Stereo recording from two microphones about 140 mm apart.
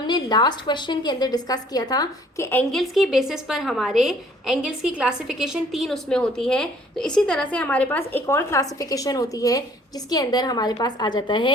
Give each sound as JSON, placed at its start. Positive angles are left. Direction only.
{"t": 0.1, "sound": "a woman's voice", "side_deg": 30}
{"t": 2.7, "sound": "a woman's voice", "side_deg": 0}